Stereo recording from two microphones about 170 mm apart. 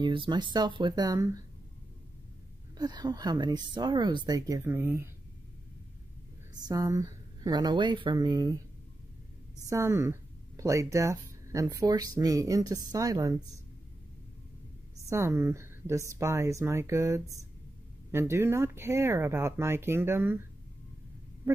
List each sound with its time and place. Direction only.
0.0 s speech: 30° right (ahead or behind)
2.8 s speech: 25° right (ahead or behind)
6.7 s speech: 20° right (ahead or behind)
9.7 s speech: 15° right (ahead or behind)
15.0 s speech: 15° right (ahead or behind)